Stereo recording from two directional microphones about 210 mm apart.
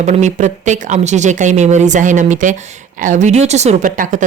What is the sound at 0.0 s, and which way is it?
Speech, 35° right (ahead or behind).